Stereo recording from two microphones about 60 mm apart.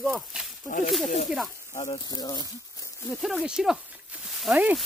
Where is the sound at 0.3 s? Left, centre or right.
Centre.